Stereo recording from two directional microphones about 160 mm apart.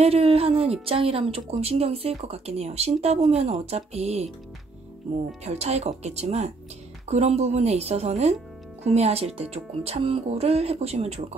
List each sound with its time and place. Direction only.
0.0 s speech: 40° right (ahead or behind)
5.4 s speech: 40° right (ahead or behind)